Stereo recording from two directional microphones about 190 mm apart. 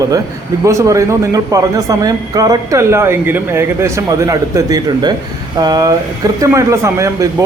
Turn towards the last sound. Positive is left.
turn(degrees=-15)  # may be behind; listen again after turning